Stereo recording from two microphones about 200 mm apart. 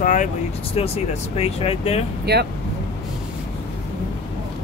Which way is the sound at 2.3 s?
55° right (ahead or behind).